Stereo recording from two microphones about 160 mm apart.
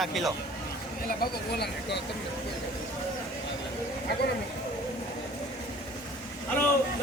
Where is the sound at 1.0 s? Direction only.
80° left.